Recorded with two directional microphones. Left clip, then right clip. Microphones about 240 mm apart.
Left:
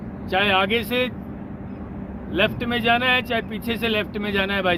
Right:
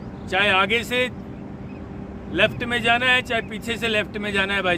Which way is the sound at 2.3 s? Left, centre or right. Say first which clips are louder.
Right 1 dB; centre.